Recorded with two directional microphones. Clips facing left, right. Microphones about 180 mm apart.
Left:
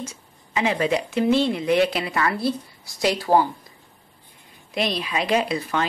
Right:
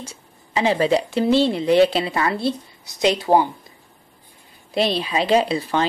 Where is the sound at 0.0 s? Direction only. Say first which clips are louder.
Left 3 dB; 30° right (ahead or behind).